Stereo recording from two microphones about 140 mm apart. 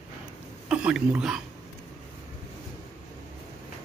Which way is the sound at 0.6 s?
5° right (ahead or behind).